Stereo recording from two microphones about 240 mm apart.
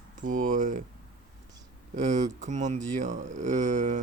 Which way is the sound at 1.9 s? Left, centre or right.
Right.